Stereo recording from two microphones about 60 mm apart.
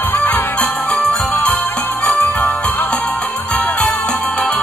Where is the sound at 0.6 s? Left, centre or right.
Centre.